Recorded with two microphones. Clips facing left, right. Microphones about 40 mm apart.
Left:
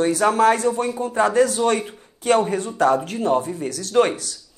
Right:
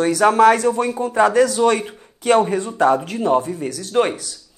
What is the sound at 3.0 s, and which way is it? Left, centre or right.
Speech, right.